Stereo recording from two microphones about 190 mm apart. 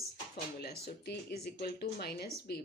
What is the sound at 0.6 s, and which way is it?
Speech, 60° left (ahead or behind).